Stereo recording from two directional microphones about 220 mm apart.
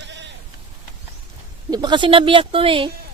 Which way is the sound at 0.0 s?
50° right (ahead or behind).